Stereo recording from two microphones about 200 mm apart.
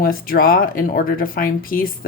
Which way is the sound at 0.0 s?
45° left (ahead or behind).